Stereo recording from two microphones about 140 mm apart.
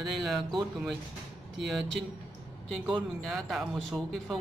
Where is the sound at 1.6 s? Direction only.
Centre (ahead or behind).